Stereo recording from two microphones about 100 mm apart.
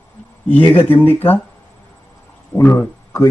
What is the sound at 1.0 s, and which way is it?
Speech, 20° left (ahead or behind).